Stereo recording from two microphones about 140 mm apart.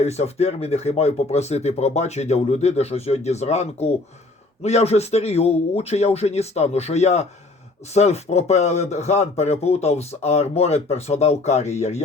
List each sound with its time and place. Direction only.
0.0 s speech: 50° left (ahead or behind)